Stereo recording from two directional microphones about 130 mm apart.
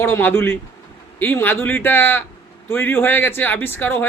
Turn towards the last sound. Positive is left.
turn(degrees=15)  # may be behind; listen again after turning